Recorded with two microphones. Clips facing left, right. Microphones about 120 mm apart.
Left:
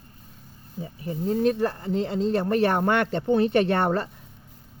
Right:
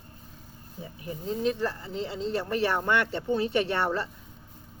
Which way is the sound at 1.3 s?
50° left (ahead or behind).